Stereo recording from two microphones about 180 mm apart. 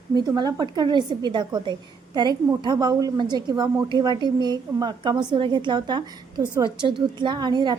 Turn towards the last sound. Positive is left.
turn(degrees=-25)  # may be behind; listen again after turning